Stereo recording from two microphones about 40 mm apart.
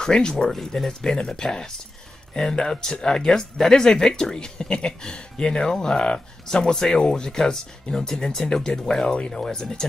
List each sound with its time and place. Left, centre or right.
0.0 s speech: centre